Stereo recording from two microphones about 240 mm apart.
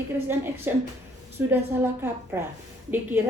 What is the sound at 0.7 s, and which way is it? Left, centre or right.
Speech, centre.